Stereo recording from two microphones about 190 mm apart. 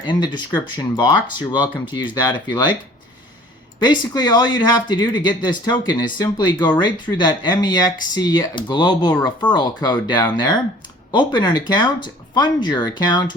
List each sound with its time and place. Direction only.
0.0 s speech: 25° left (ahead or behind)
3.8 s speech: 20° left (ahead or behind)